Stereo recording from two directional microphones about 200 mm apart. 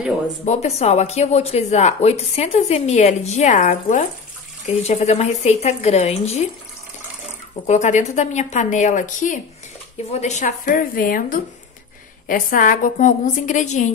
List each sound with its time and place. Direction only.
0.5 s speech: 30° left (ahead or behind)
7.6 s a woman's voice: 35° left (ahead or behind)